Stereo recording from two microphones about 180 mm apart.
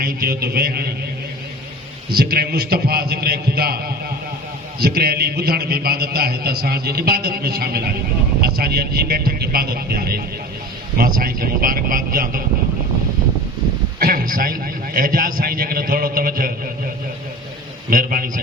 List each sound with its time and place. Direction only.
0.0 s a man's voice: 55° right (ahead or behind)
2.0 s a man's voice: 60° right (ahead or behind)
4.8 s a man's voice: 60° right (ahead or behind)
14.0 s a man's voice: 55° right (ahead or behind)
17.9 s a man's voice: 55° right (ahead or behind)